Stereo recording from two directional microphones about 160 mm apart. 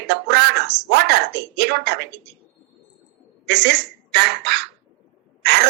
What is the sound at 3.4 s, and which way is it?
A woman's voice, 90° right.